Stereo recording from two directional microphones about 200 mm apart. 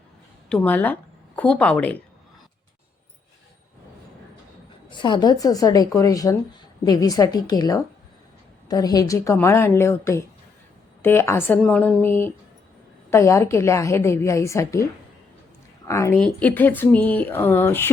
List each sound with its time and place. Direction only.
0.4 s a woman's voice: 5° left (ahead or behind)
4.9 s a woman's voice: 25° left (ahead or behind)
15.9 s a woman's voice: 15° left (ahead or behind)